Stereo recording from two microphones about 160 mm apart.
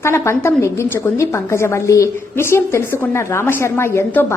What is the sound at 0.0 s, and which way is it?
A woman's voice, 15° left (ahead or behind).